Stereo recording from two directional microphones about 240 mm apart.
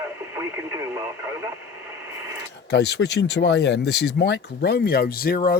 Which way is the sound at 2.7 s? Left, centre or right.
Left.